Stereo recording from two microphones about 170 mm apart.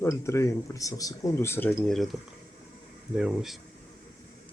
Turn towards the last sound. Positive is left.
turn(degrees=-5)  # may be behind; listen again after turning